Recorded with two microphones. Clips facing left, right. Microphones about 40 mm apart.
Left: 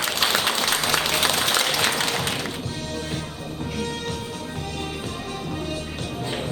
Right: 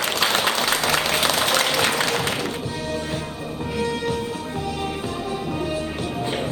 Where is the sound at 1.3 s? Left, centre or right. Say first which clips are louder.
Right 2 dB; right.